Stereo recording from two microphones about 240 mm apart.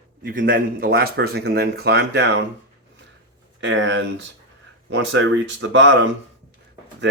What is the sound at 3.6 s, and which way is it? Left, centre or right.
Speech, right.